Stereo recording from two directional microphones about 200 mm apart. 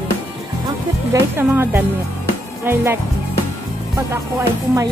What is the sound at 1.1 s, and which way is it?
Speech, 10° right (ahead or behind).